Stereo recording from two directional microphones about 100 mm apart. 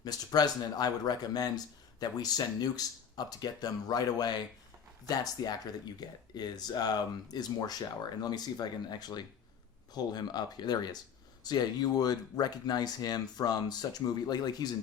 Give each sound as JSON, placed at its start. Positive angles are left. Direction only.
{"t": 0.0, "sound": "speech", "side_deg": 40}